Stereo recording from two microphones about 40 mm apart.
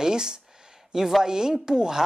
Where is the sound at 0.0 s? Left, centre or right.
Centre.